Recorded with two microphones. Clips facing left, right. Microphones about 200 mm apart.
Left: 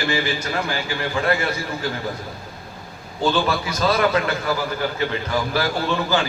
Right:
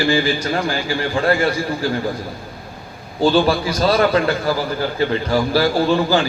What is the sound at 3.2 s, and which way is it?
A man's voice, 30° right (ahead or behind).